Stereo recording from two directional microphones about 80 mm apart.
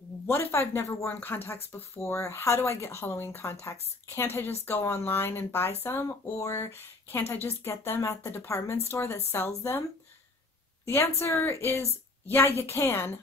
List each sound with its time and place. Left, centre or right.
0.3 s speech: left
5.9 s speech: left
10.9 s speech: left